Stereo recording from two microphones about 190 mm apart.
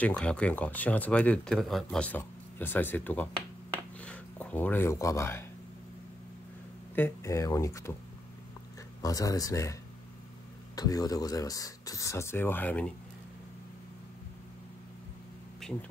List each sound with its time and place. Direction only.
0.0 s speech: 5° left (ahead or behind)
7.0 s speech: 15° left (ahead or behind)
9.0 s speech: 20° left (ahead or behind)
10.8 s speech: 20° left (ahead or behind)
15.6 s a sound: centre (ahead or behind)